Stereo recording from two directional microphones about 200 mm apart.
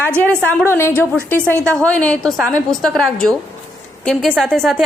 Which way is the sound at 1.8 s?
5° left (ahead or behind).